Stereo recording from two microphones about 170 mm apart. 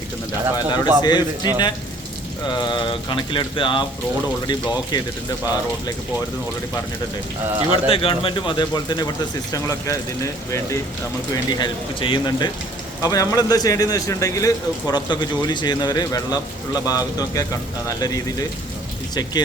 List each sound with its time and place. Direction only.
0.5 s speech: 25° left (ahead or behind)
7.7 s speech: 30° left (ahead or behind)
11.3 s speech: 30° left (ahead or behind)